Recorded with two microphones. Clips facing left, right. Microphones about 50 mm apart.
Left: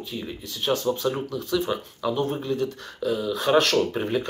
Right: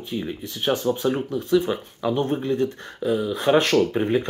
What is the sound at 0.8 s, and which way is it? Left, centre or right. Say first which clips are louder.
Speech: right 2 dB; right.